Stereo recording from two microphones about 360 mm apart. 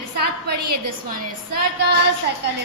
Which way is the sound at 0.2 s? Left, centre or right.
Right.